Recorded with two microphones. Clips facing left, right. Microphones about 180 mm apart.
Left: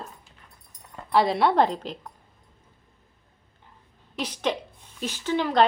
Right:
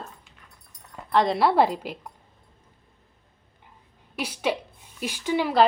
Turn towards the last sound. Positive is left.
turn(degrees=-10)  # may be behind; listen again after turning